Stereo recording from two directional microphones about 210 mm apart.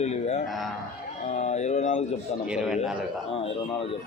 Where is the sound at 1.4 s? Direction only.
30° left (ahead or behind).